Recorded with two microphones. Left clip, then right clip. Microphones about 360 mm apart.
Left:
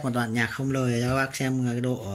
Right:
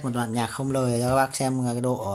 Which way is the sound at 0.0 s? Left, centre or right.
Centre.